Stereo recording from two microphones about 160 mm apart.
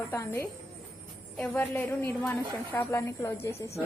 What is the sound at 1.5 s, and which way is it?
A woman's voice, 15° left (ahead or behind).